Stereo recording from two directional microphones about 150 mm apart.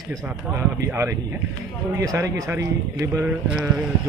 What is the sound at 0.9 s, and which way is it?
Speech, 20° right (ahead or behind).